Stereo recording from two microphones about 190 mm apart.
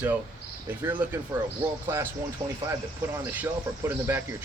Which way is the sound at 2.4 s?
20° right (ahead or behind).